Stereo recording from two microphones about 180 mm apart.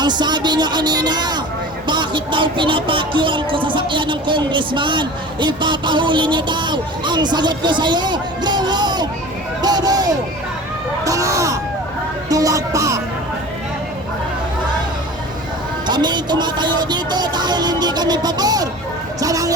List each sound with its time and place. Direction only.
0.0 s speech: 25° right (ahead or behind)
9.6 s a sound: 20° right (ahead or behind)
12.3 s music: 20° right (ahead or behind)
15.9 s speech: 25° right (ahead or behind)